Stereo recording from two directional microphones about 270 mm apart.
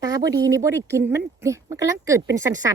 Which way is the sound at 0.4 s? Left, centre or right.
Centre.